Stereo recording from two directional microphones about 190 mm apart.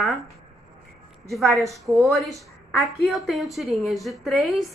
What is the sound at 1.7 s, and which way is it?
Speech, 15° right (ahead or behind).